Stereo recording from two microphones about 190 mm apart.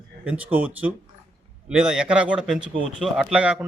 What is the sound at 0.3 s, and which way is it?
A man's voice, 5° right (ahead or behind).